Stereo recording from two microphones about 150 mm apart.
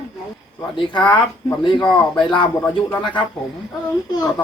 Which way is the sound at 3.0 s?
30° left (ahead or behind).